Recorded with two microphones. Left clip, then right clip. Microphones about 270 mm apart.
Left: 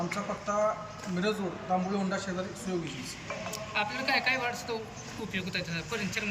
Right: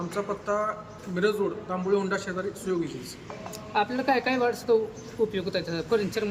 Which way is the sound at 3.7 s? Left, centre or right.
Right.